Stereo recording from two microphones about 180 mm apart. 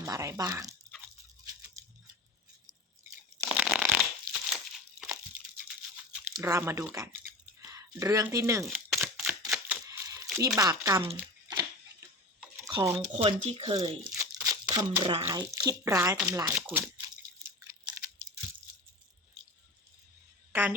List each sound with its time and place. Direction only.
0.0 s speech: 15° right (ahead or behind)
1.8 s a sound: 15° right (ahead or behind)
3.3 s shuffling cards: 5° right (ahead or behind)
6.3 s speech: 15° right (ahead or behind)
8.7 s single-lens reflex camera: centre (ahead or behind)
9.8 s a sound: 15° right (ahead or behind)
10.3 s speech: 20° right (ahead or behind)
11.4 s a sound: 20° right (ahead or behind)
13.0 s speech: 35° right (ahead or behind)
14.1 s crumpling: 20° right (ahead or behind)
15.2 s speech: 20° right (ahead or behind)
16.7 s a sound: 10° right (ahead or behind)
20.5 s speech: 10° right (ahead or behind)